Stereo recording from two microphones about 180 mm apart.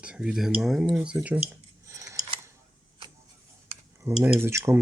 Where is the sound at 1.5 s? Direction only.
15° right (ahead or behind).